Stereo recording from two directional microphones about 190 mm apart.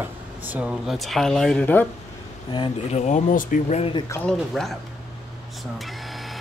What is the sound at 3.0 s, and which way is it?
Speech, 40° left (ahead or behind).